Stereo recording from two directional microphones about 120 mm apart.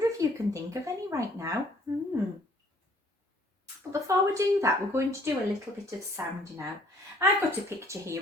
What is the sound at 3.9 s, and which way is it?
Speech, 25° right (ahead or behind).